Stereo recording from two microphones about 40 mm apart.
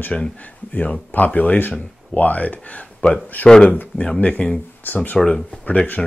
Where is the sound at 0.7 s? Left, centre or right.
Left.